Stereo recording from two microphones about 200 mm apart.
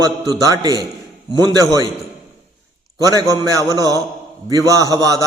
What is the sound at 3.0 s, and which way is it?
A man's voice, 15° right (ahead or behind).